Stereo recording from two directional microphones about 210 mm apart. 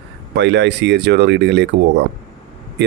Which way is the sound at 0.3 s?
55° right (ahead or behind).